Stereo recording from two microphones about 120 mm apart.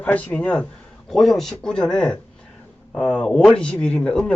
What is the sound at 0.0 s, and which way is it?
Speech, 10° left (ahead or behind).